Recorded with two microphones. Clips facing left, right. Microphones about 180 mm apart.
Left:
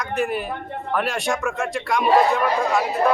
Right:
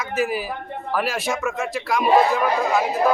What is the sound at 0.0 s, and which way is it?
A man's voice, 5° right (ahead or behind).